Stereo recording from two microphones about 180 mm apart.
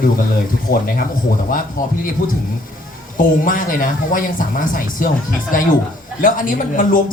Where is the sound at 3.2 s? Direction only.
50° left (ahead or behind).